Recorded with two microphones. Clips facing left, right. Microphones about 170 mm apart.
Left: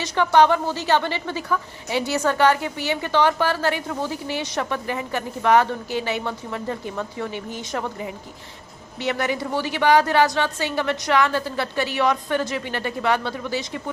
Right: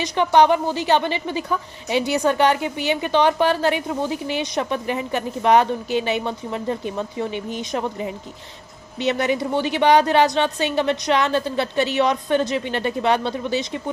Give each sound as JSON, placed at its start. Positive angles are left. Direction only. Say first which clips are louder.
{"t": 0.0, "sound": "a woman's voice", "louder": "right 1 dB", "side_deg": -20}